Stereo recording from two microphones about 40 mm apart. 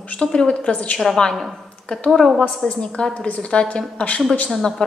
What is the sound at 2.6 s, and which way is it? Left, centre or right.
A woman's voice, left.